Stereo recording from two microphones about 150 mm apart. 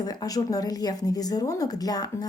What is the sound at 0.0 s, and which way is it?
A woman's voice, 25° left (ahead or behind).